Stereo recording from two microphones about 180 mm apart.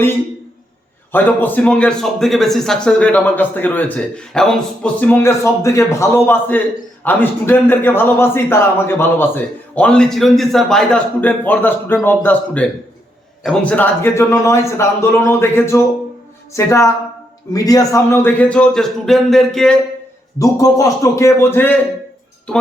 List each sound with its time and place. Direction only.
1.1 s a man's voice: 10° left (ahead or behind)
20.4 s a man's voice: 20° left (ahead or behind)